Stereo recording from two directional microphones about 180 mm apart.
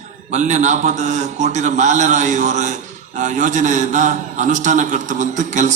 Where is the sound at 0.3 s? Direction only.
40° right (ahead or behind).